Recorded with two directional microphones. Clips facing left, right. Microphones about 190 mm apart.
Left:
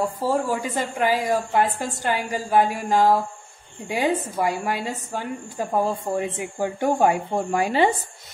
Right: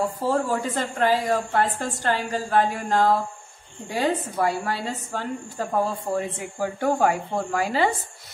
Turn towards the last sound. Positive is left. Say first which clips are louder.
# left 3 dB
turn(degrees=20)  # may be behind; listen again after turning